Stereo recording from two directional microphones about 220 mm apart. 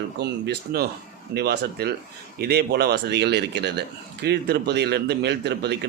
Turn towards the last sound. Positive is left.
turn(degrees=-50)  # may be behind; listen again after turning